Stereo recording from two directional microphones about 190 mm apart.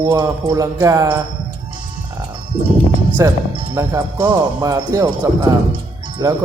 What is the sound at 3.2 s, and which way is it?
Speech, 15° right (ahead or behind).